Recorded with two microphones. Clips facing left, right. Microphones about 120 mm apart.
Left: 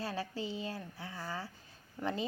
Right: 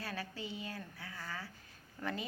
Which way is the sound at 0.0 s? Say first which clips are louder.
Left 5 dB; 25° left (ahead or behind).